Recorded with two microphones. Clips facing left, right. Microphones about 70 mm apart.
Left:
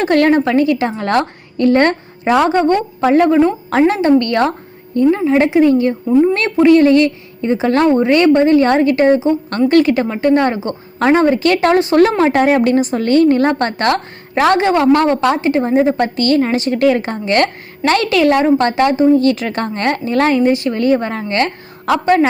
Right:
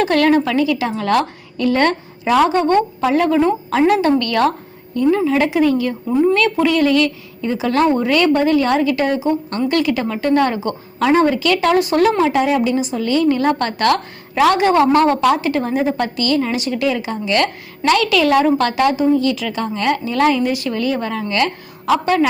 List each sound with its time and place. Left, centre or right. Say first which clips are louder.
0.0 s a woman's voice: left 2 dB; left
14.7 s a woman's voice: left 1 dB; left
16.1 s a woman's voice: left 4 dB; left